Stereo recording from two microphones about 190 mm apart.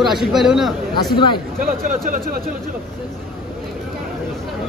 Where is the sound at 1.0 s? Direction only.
25° left (ahead or behind).